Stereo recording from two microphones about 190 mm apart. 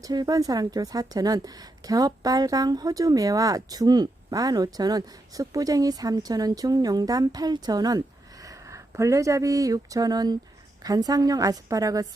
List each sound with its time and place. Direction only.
0.0 s speech: 20° right (ahead or behind)